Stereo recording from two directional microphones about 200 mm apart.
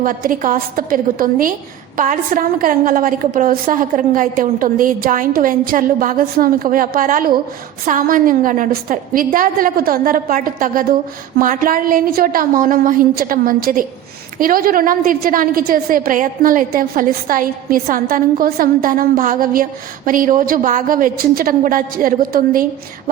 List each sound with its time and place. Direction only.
0.0 s a woman's voice: 45° right (ahead or behind)